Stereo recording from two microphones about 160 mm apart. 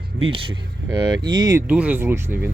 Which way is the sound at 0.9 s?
25° right (ahead or behind).